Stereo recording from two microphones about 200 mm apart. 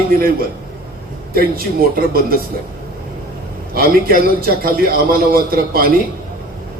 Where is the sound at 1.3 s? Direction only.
50° right (ahead or behind).